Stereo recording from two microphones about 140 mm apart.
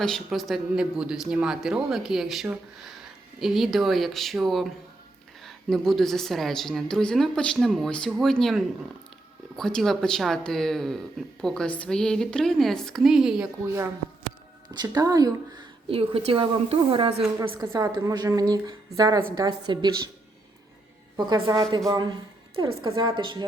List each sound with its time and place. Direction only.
0.0 s a woman's voice: centre (ahead or behind)
14.7 s a woman's voice: 30° right (ahead or behind)
15.9 s a woman's voice: 40° right (ahead or behind)
17.6 s a woman's voice: 20° right (ahead or behind)
21.2 s a woman's voice: 30° right (ahead or behind)